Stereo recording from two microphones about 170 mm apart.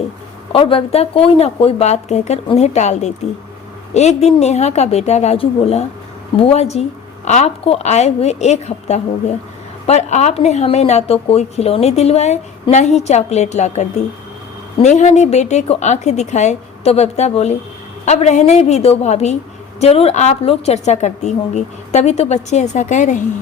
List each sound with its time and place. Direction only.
0.5 s a woman's voice: 30° left (ahead or behind)